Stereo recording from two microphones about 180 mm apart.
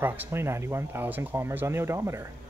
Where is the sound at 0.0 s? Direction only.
10° right (ahead or behind).